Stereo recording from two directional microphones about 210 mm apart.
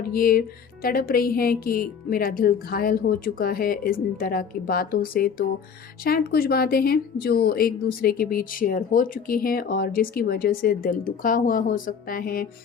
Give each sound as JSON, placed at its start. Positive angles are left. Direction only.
{"t": 0.1, "sound": "speech", "side_deg": 45}